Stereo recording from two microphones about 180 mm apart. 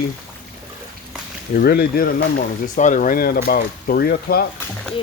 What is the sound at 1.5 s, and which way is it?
Speech, 60° left (ahead or behind).